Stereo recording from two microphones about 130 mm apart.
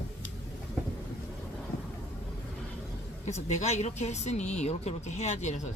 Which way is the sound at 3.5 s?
60° left (ahead or behind).